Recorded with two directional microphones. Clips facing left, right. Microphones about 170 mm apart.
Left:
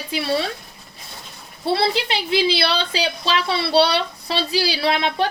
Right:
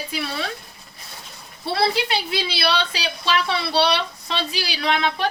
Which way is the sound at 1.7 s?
25° left (ahead or behind).